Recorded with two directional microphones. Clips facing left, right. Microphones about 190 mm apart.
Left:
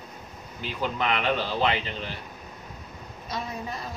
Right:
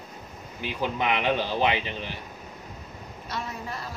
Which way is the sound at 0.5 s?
15° right (ahead or behind).